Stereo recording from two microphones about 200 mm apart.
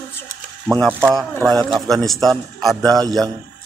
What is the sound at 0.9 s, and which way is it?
Speech, 5° left (ahead or behind).